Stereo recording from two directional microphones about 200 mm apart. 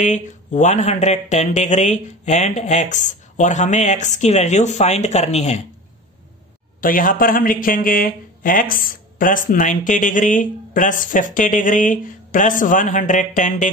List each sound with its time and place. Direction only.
0.0 s speech: 35° left (ahead or behind)
6.8 s speech: 45° left (ahead or behind)